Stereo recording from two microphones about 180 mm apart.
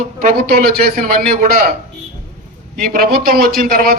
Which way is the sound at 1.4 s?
55° right (ahead or behind).